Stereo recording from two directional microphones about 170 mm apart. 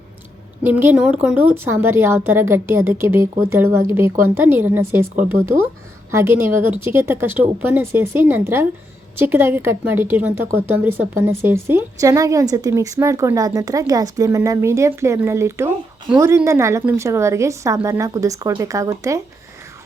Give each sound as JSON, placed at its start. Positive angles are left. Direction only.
{"t": 0.6, "sound": "a woman's voice", "side_deg": -10}